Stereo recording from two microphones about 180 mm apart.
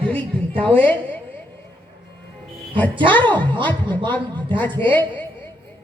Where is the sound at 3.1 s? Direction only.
10° left (ahead or behind).